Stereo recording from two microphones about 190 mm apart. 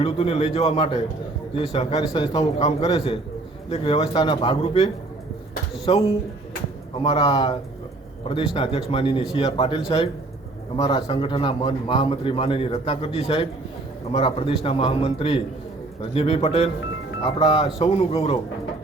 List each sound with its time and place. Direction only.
0.0 s a man's voice: 30° left (ahead or behind)
5.9 s a man's voice: 30° left (ahead or behind)